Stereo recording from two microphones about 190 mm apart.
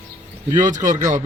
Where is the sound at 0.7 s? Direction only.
40° right (ahead or behind).